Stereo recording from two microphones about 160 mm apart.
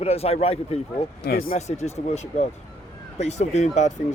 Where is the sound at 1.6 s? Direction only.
45° left (ahead or behind).